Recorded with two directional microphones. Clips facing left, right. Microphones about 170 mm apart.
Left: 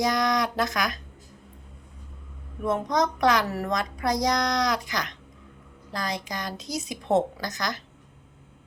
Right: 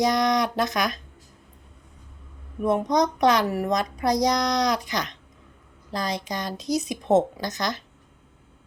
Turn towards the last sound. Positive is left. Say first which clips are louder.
# right 3 dB
turn(degrees=-20)  # may be behind; listen again after turning